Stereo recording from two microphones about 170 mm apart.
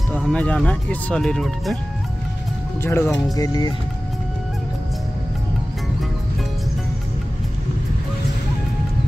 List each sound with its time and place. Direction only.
0.1 s speech: 5° left (ahead or behind)
2.8 s speech: 15° left (ahead or behind)